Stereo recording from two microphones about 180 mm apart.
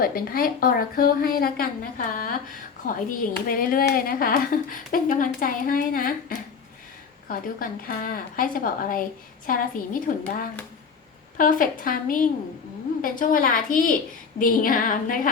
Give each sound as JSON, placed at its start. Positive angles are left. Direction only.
{"t": 0.0, "sound": "speech", "side_deg": 55}